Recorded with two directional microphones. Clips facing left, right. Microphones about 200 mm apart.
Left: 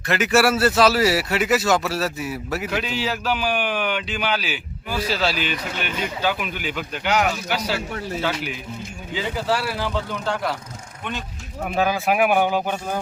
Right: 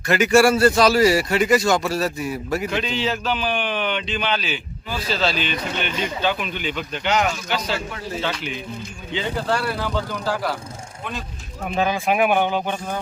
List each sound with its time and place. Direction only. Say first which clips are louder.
0.1 s a man's voice: right 3 dB; centre (ahead or behind)
11.6 s a man's voice: even; 5° left (ahead or behind)